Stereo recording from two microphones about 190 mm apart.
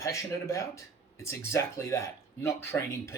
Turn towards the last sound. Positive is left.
turn(degrees=15)  # may be behind; listen again after turning